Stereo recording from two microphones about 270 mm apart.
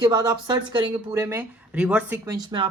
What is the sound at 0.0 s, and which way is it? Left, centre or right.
Speech, centre.